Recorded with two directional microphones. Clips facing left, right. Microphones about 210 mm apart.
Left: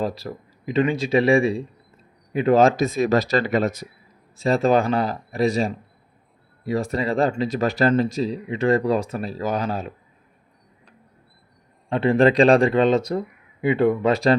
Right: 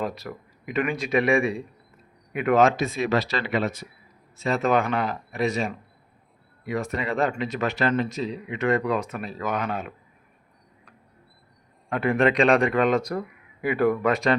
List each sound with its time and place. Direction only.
0.0 s speech: 30° left (ahead or behind)
11.9 s speech: 30° left (ahead or behind)